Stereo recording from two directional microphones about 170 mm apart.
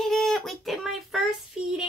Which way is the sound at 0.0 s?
Centre (ahead or behind).